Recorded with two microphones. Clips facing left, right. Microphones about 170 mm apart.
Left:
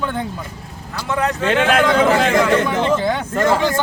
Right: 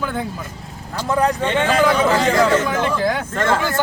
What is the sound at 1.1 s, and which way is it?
Speech, 35° right (ahead or behind).